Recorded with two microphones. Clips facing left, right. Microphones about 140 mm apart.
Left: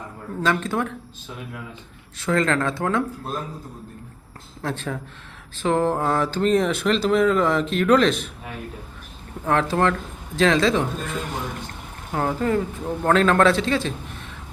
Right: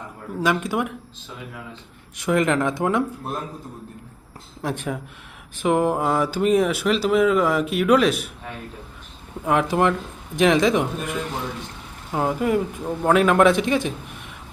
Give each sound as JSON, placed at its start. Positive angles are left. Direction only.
{"t": 0.3, "sound": "speech", "side_deg": -10}
{"t": 2.1, "sound": "speech", "side_deg": -15}
{"t": 4.6, "sound": "speech", "side_deg": -15}
{"t": 9.4, "sound": "speech", "side_deg": -15}